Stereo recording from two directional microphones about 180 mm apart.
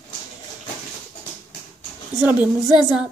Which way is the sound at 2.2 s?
5° right (ahead or behind).